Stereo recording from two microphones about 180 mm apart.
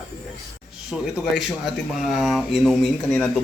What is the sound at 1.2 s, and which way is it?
Speech, centre (ahead or behind).